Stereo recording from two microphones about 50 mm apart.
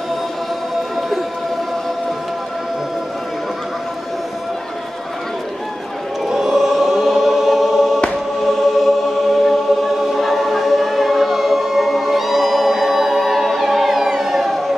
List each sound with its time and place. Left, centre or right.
6.2 s choir: centre